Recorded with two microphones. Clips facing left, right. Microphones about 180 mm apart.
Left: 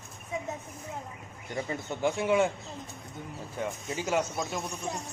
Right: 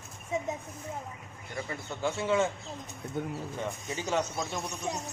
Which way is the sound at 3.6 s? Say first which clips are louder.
Left 5 dB; 10° left (ahead or behind).